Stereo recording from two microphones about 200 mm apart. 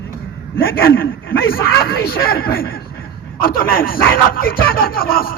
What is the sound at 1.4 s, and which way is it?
Speech, 50° left (ahead or behind).